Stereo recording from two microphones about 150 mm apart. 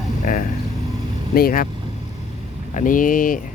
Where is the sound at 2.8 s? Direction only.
65° left (ahead or behind).